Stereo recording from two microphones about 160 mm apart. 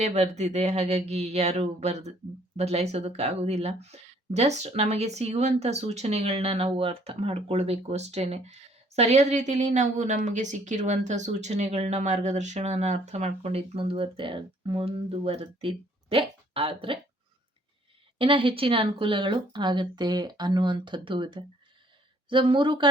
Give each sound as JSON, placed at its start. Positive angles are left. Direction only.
{"t": 0.0, "sound": "speech", "side_deg": -45}
{"t": 18.2, "sound": "speech", "side_deg": -35}